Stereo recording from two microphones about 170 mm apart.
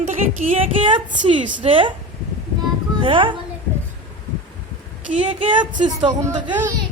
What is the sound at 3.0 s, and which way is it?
Speech, 30° right (ahead or behind).